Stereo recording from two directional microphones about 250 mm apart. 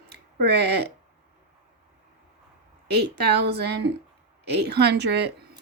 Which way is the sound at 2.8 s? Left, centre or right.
Right.